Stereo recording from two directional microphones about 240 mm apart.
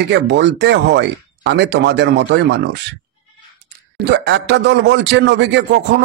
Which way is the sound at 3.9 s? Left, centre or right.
Right.